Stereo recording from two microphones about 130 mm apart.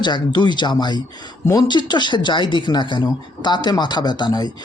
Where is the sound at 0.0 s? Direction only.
35° left (ahead or behind).